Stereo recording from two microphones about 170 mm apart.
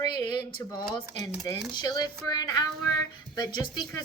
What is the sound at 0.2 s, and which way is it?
A woman's voice, 25° left (ahead or behind).